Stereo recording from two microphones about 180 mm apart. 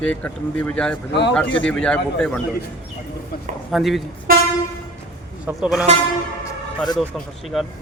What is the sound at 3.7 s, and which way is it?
Speech, centre (ahead or behind).